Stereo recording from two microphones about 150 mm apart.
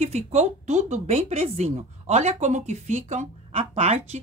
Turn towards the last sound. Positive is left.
turn(degrees=-45)  # may be behind; listen again after turning